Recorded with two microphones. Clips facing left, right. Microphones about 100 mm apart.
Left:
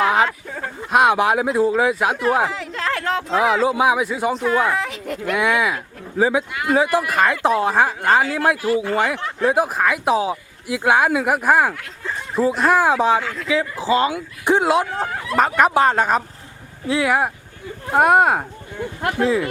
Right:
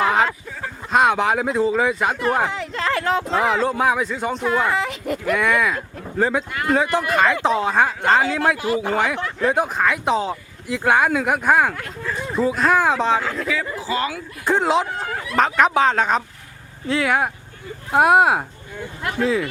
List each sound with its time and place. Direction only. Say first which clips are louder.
0.0 s a sound: left 1 dB; centre (ahead or behind)
0.8 s speech: left 2 dB; 5° left (ahead or behind)
8.5 s speech: left 2 dB; 20° right (ahead or behind)
8.9 s speech: left 1 dB; centre (ahead or behind)
13.7 s speech: left 5 dB; 25° left (ahead or behind)
14.6 s speech: left 1 dB; 5° left (ahead or behind)